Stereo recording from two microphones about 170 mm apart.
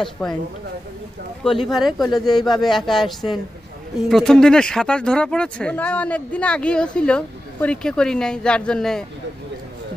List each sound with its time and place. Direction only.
0.0 s speech: 5° left (ahead or behind)
1.4 s speech: centre (ahead or behind)